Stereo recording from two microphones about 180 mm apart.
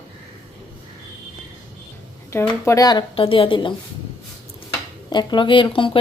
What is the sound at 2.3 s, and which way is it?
A woman's voice, 15° left (ahead or behind).